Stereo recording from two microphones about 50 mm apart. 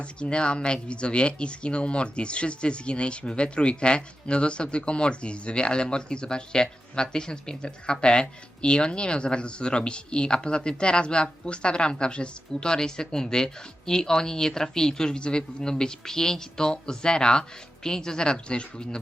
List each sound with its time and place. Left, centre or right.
0.0 s speech: left